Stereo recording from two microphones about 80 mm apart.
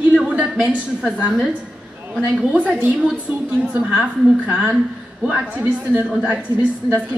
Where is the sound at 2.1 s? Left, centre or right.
Centre.